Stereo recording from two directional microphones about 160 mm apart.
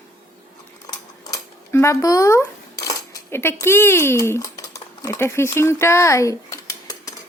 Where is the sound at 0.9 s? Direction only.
20° left (ahead or behind).